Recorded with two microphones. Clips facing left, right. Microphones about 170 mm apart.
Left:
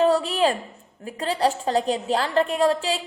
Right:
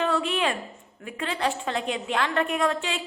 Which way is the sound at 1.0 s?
35° left (ahead or behind).